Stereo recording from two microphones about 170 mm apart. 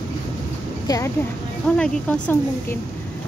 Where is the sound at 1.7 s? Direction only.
5° left (ahead or behind).